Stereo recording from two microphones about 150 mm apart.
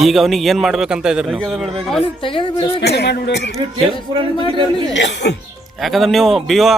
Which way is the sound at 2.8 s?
90° left.